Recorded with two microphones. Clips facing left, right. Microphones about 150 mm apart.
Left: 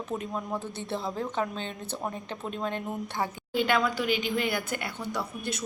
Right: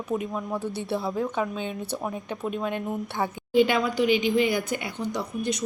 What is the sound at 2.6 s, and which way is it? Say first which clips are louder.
Speech: right 3 dB; 15° right (ahead or behind).